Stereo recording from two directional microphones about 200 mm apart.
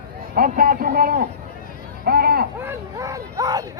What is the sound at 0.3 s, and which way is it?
A man's voice, 45° right (ahead or behind).